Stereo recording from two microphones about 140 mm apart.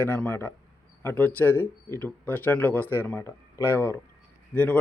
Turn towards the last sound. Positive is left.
turn(degrees=10)  # may be behind; listen again after turning